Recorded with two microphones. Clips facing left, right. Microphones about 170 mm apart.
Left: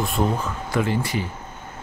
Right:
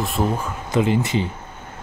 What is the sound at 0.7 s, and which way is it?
Speech, 20° right (ahead or behind).